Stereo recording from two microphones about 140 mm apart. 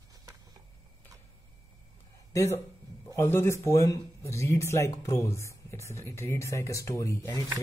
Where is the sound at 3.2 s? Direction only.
15° left (ahead or behind).